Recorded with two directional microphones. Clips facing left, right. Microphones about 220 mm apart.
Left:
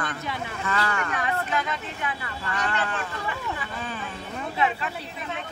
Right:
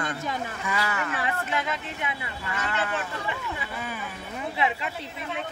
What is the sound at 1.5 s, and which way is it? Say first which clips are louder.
Speech: left 1 dB; 25° right (ahead or behind).